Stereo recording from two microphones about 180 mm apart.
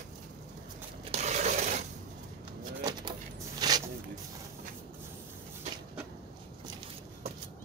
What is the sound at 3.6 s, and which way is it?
Zipper, 20° right (ahead or behind).